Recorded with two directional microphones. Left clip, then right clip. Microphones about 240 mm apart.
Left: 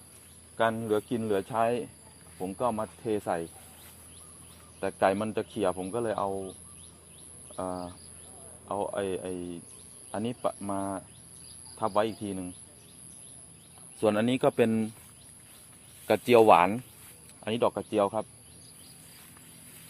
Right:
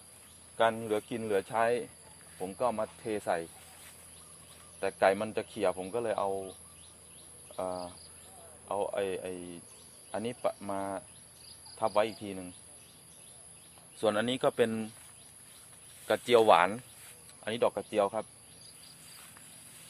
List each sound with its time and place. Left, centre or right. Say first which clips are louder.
0.5 s speech: left 2 dB; centre
4.8 s speech: left 1 dB; centre
7.5 s cricket: left 1 dB; centre
8.6 s speech: left 1 dB; centre
14.0 s speech: left 3 dB; centre
16.0 s speech: left 4 dB; left